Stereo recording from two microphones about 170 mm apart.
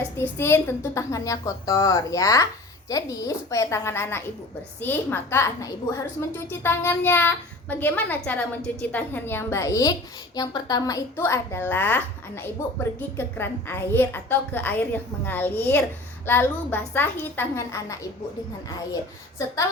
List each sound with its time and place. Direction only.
0.2 s a woman's voice: 15° left (ahead or behind)